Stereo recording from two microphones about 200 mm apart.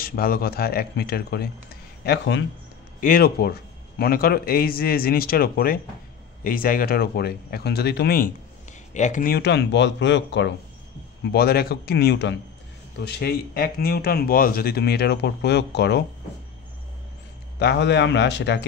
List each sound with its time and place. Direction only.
0.0 s speech: 50° left (ahead or behind)
3.0 s speech: 45° left (ahead or behind)
8.9 s speech: 40° left (ahead or behind); by 10.5 s 65° left (ahead or behind)
11.2 s speech: 50° left (ahead or behind)
17.6 s speech: 55° left (ahead or behind)